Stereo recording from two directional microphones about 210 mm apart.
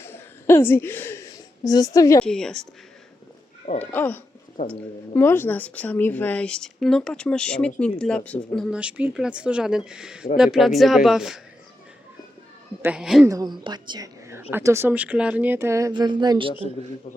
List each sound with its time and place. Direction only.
0.0 s a sound: 10° left (ahead or behind)
2.2 s a woman's voice: 5° left (ahead or behind)
3.9 s a woman's voice: 10° left (ahead or behind)
12.8 s a woman's voice: 5° right (ahead or behind)
13.2 s speech: 15° right (ahead or behind)